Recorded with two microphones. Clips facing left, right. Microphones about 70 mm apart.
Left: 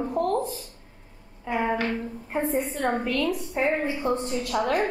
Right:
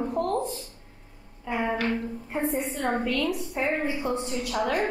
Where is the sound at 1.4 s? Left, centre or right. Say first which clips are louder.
Left 2 dB; centre.